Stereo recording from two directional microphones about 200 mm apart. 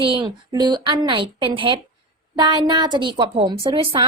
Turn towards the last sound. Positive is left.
turn(degrees=-25)  # may be behind; listen again after turning